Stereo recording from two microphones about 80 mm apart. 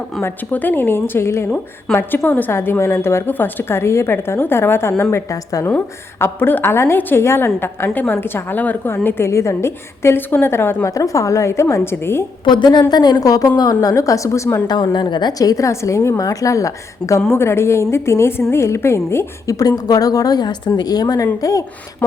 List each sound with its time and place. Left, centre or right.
0.2 s a woman's voice: left
2.5 s a woman's voice: left
5.1 s a woman's voice: left
5.6 s a woman's voice: left
10.8 s a woman's voice: left
12.5 s a woman's voice: left
12.9 s a woman's voice: left
13.9 s a woman's voice: left
14.7 s a woman's voice: left
17.2 s a woman's voice: left
19.5 s a woman's voice: left